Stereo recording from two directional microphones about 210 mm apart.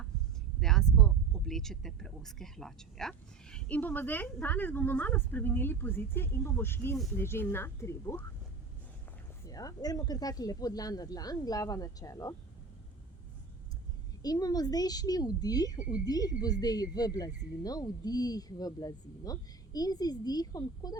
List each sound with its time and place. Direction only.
0.6 s speech: centre (ahead or behind)
9.5 s speech: 15° left (ahead or behind)
14.2 s speech: 20° left (ahead or behind)